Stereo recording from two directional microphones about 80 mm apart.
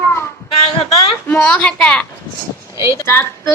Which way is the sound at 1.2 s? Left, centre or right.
Left.